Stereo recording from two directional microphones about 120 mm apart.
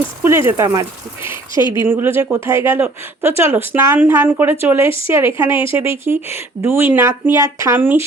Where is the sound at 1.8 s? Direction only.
20° right (ahead or behind).